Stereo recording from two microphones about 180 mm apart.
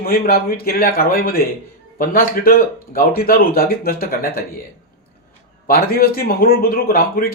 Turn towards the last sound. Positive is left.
turn(degrees=55)  # may be behind; listen again after turning